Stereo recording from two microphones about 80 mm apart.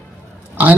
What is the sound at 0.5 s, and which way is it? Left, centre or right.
Speech, centre.